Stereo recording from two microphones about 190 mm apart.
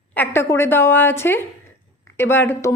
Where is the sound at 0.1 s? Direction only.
10° left (ahead or behind).